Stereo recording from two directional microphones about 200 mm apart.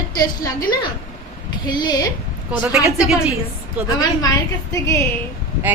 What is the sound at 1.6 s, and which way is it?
Speech, 20° left (ahead or behind).